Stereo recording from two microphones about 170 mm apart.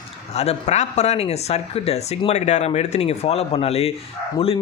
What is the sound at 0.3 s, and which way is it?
Speech, 40° left (ahead or behind).